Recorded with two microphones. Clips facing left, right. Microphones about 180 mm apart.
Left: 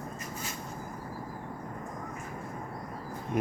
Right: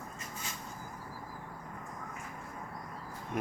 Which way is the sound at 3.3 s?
Centre (ahead or behind).